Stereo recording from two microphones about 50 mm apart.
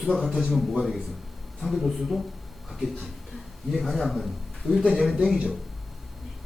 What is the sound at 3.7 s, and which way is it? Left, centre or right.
A man's voice, centre.